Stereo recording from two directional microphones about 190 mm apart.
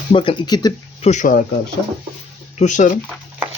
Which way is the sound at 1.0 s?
40° left (ahead or behind).